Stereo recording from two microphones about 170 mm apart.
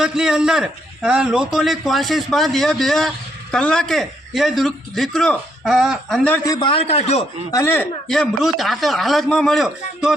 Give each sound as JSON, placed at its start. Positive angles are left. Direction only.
{"t": 0.0, "sound": "a man's voice", "side_deg": -5}
{"t": 6.4, "sound": "a man's voice", "side_deg": 25}
{"t": 7.5, "sound": "a man's voice", "side_deg": 15}